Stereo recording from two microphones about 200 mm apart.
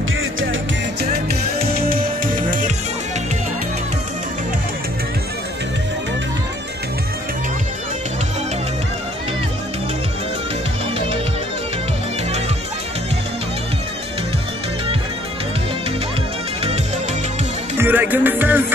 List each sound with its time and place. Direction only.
0.2 s music: 80° right
17.7 s music: 10° right (ahead or behind)